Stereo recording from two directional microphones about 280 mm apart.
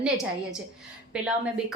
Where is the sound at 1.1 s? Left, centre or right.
Centre.